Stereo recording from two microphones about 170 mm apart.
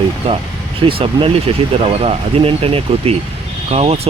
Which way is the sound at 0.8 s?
30° right (ahead or behind).